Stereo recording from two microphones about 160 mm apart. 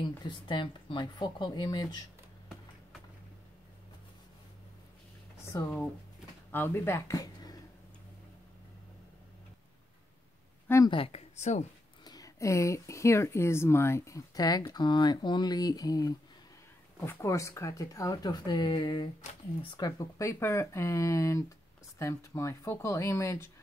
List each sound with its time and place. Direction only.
0.2 s speech: 30° left (ahead or behind)
5.5 s speech: 20° left (ahead or behind)
10.9 s speech: 35° left (ahead or behind)
12.0 s speech: 25° left (ahead or behind)